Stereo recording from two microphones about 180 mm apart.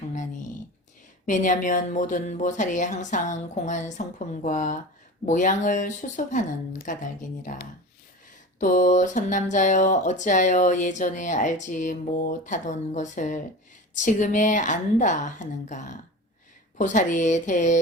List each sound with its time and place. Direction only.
1.3 s speech: 45° left (ahead or behind)